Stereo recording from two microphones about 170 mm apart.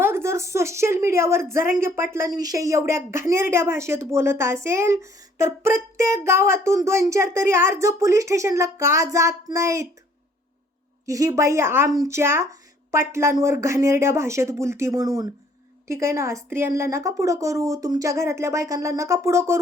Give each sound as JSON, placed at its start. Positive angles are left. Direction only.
{"t": 0.0, "sound": "a woman's voice", "side_deg": -15}
{"t": 11.0, "sound": "a woman's voice", "side_deg": -20}